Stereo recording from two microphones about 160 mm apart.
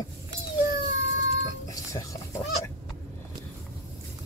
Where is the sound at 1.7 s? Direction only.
20° left (ahead or behind).